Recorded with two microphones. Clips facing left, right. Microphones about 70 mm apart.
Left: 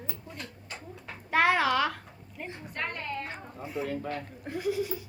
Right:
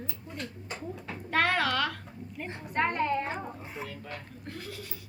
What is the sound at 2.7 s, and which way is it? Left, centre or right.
Speech, right.